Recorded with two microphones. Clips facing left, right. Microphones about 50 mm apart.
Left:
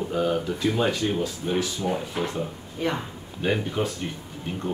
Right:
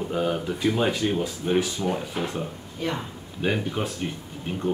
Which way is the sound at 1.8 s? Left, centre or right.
Centre.